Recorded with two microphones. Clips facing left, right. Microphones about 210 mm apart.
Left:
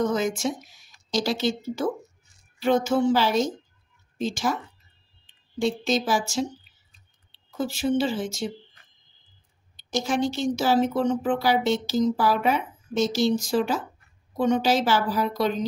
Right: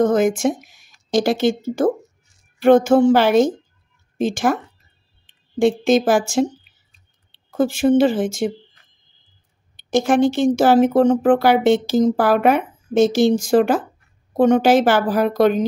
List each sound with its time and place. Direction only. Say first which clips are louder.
0.0 s speech: right 8 dB; 50° right (ahead or behind)
5.6 s speech: right 9 dB; 55° right (ahead or behind)
7.5 s speech: right 9 dB; 50° right (ahead or behind)
9.8 s speech: right 9 dB; 55° right (ahead or behind)